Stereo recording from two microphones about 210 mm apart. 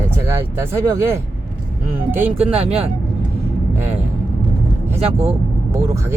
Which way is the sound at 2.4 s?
30° right (ahead or behind).